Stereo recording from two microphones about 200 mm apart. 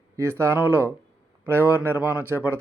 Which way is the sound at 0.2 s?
15° right (ahead or behind).